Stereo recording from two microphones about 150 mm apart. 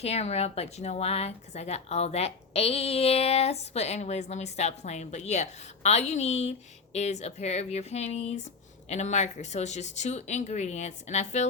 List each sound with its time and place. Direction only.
0.0 s speech: 45° left (ahead or behind)